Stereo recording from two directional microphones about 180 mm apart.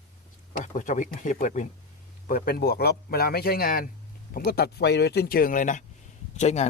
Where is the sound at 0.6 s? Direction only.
45° left (ahead or behind).